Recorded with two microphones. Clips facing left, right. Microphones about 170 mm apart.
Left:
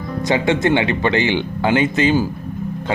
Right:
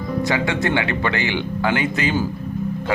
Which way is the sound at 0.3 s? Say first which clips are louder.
Left 7 dB; 20° left (ahead or behind).